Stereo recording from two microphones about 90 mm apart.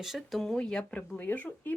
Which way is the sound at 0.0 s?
Centre (ahead or behind).